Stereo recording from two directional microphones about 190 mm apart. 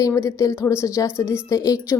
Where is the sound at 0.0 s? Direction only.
15° left (ahead or behind).